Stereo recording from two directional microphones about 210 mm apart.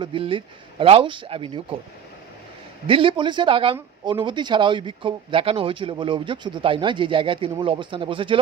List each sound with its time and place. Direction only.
0.0 s speech: 25° right (ahead or behind)
2.8 s speech: 25° right (ahead or behind)